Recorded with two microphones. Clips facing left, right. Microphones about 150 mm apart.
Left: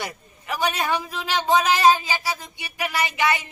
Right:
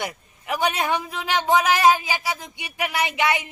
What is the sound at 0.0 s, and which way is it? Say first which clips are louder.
A man's voice: right 2 dB; 15° right (ahead or behind).